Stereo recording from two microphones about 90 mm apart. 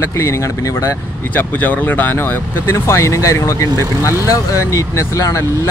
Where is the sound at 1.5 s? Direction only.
20° left (ahead or behind).